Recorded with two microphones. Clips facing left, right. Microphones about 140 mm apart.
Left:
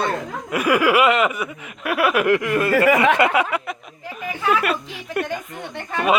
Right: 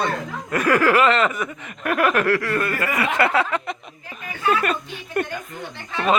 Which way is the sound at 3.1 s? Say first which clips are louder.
Left 2 dB; 15° left (ahead or behind).